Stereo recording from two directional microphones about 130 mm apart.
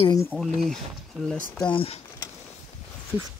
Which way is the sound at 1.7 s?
45° left (ahead or behind).